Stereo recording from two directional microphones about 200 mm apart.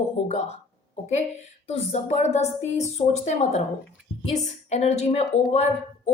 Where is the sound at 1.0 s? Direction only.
35° left (ahead or behind).